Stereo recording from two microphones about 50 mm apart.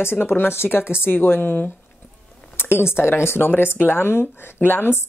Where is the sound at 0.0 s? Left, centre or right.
Left.